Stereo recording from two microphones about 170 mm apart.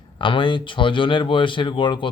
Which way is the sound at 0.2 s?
30° left (ahead or behind).